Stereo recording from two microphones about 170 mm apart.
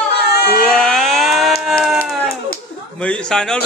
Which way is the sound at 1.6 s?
Centre (ahead or behind).